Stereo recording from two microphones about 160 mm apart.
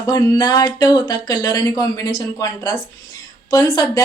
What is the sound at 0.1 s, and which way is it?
Speech, 25° left (ahead or behind).